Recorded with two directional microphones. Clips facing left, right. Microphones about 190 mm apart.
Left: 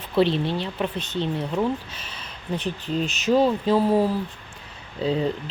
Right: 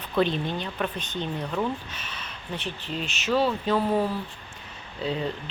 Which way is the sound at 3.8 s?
10° left (ahead or behind).